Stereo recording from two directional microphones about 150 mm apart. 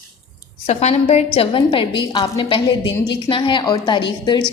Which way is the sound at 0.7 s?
45° left (ahead or behind).